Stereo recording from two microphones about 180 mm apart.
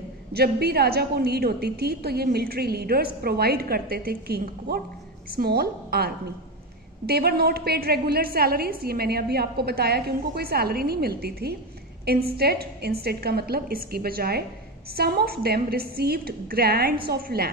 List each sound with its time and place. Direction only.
0.3 s a woman's voice: 60° right (ahead or behind)